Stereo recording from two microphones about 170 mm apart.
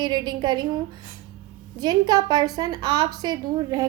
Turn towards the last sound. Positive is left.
turn(degrees=-20)  # may be behind; listen again after turning